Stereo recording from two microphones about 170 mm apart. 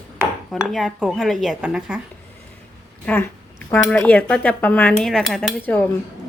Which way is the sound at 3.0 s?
10° left (ahead or behind).